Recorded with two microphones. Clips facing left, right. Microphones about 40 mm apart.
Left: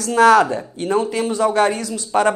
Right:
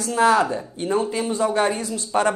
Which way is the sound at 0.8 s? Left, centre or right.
Left.